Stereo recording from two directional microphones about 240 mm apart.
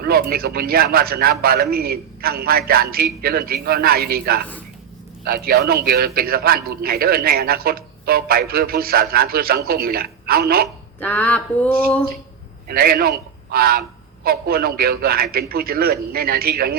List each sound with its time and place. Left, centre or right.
0.0 s a man's voice: right
11.0 s speech: centre
12.6 s a man's voice: right